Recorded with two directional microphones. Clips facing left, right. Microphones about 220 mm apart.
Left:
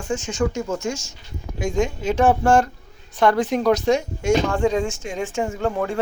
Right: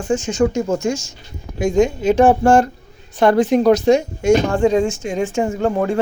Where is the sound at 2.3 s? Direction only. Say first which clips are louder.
Right 4 dB; 30° right (ahead or behind).